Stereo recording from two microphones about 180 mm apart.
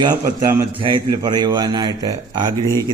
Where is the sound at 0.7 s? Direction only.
30° right (ahead or behind).